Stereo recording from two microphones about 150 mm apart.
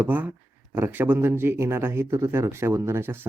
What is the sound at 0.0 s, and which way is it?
Speech, 15° right (ahead or behind).